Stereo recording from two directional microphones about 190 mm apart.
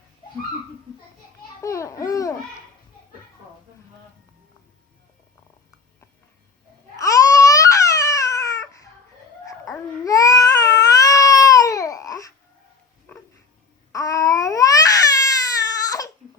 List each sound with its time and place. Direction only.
1.6 s a child's voice: 15° left (ahead or behind)
6.9 s babbling: 15° left (ahead or behind)
13.1 s a sound: 10° left (ahead or behind)
13.9 s babbling: 15° left (ahead or behind)